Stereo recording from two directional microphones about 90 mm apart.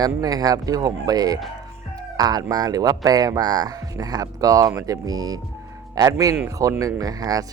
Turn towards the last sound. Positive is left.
turn(degrees=-45)  # may be behind; listen again after turning